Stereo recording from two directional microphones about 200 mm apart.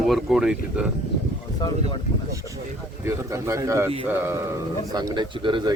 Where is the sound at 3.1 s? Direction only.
15° right (ahead or behind).